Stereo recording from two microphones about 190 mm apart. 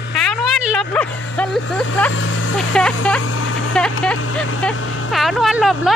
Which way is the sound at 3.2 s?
90° left.